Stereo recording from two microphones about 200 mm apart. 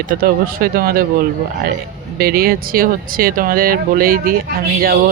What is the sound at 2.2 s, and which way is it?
Speech, 50° right (ahead or behind).